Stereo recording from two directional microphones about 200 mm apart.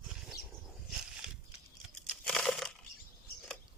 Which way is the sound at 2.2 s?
Centre (ahead or behind).